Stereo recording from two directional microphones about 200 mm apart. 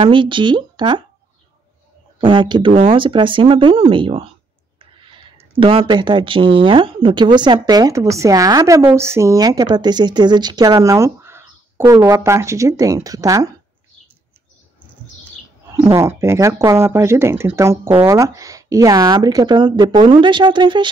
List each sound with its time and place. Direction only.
0.0 s speech: 25° right (ahead or behind)
2.1 s speech: 25° right (ahead or behind)
15.7 s speech: 15° right (ahead or behind)